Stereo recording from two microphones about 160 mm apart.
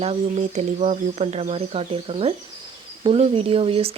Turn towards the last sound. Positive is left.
turn(degrees=-35)  # may be behind; listen again after turning